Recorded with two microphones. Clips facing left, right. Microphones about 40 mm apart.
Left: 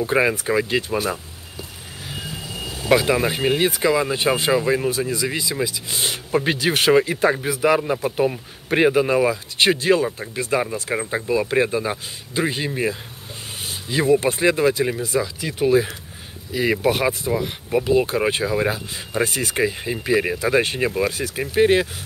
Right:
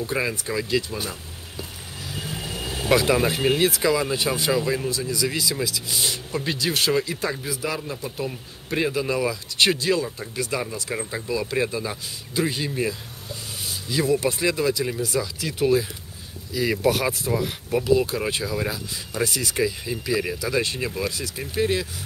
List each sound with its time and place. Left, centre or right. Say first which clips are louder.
0.0 s speech: left 7 dB; left
2.2 s vehicle: right 1 dB; right
2.9 s speech: left 2 dB; centre
16.5 s speech: left 2 dB; left